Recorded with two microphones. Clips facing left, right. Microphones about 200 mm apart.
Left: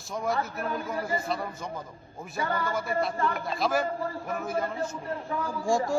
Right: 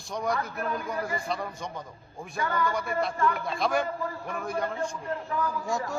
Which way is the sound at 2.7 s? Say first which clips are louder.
Even; centre (ahead or behind).